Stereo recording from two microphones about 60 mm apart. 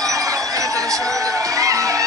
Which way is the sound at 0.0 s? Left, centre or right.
Right.